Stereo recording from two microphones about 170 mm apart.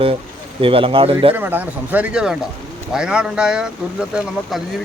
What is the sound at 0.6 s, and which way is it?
Speech, 30° right (ahead or behind).